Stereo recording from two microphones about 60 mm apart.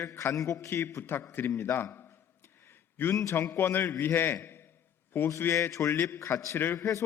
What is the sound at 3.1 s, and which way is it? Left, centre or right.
Speech, left.